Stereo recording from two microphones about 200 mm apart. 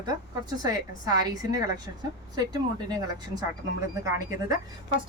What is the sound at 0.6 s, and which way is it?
A woman's voice, 20° right (ahead or behind).